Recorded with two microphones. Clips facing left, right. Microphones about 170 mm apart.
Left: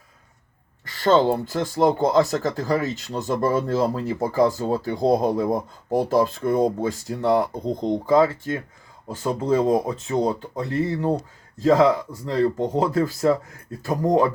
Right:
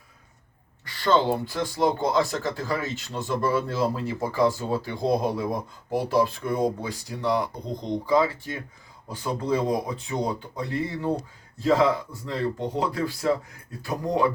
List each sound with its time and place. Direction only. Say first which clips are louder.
0.9 s speech: left 4 dB; 45° left (ahead or behind)